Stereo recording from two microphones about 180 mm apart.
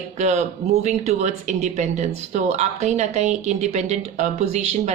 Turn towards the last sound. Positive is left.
turn(degrees=-40)  # may be behind; listen again after turning